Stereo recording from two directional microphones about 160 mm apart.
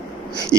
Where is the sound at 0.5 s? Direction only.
20° right (ahead or behind).